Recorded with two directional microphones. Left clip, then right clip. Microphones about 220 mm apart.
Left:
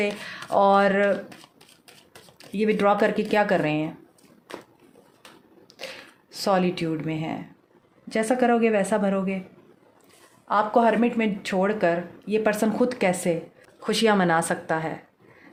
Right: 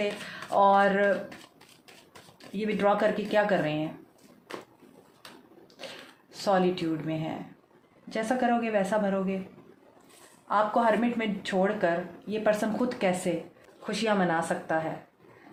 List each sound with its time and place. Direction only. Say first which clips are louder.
0.0 s speech: left 4 dB; 50° left (ahead or behind)
2.6 s speech: left 5 dB; 55° left (ahead or behind)
5.8 s a sound: left 5 dB; 55° left (ahead or behind)
6.4 s speech: left 2 dB; 55° left (ahead or behind)
10.5 s speech: left 4 dB; 55° left (ahead or behind)